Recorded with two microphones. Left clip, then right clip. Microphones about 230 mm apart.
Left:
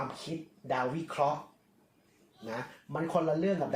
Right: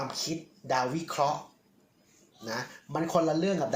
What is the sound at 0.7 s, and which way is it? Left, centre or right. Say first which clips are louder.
Speech: right 3 dB; right.